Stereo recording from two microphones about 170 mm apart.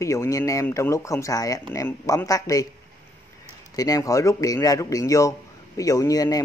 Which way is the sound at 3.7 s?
20° left (ahead or behind).